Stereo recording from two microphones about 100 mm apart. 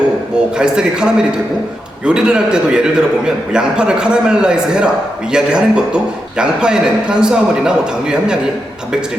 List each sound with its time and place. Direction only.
0.6 s a man's voice: 10° right (ahead or behind)